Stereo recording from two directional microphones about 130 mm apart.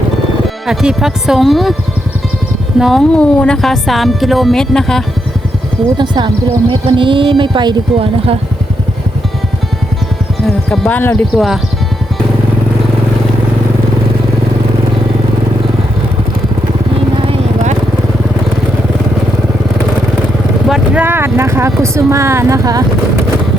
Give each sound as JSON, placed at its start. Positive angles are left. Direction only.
{"t": 0.7, "sound": "speech", "side_deg": -5}
{"t": 2.7, "sound": "speech", "side_deg": 0}
{"t": 6.0, "sound": "speech", "side_deg": -35}
{"t": 10.4, "sound": "speech", "side_deg": 10}
{"t": 11.3, "sound": "speech", "side_deg": 0}
{"t": 20.7, "sound": "speech", "side_deg": -5}
{"t": 21.0, "sound": "speech", "side_deg": -15}